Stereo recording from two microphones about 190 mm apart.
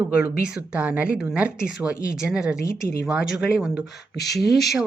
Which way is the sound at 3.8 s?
60° left (ahead or behind).